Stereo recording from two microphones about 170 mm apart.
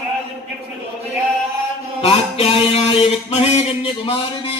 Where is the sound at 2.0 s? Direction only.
35° left (ahead or behind).